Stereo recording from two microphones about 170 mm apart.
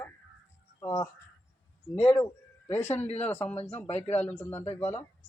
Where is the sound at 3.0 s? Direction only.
40° left (ahead or behind).